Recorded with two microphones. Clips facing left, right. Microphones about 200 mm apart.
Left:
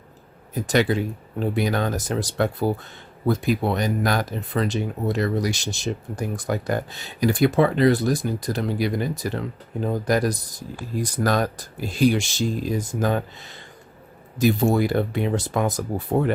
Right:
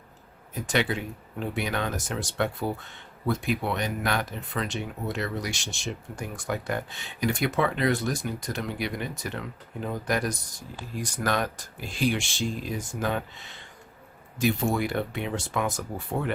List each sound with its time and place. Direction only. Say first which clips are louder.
0.5 s speech: left 6 dB; 40° left (ahead or behind)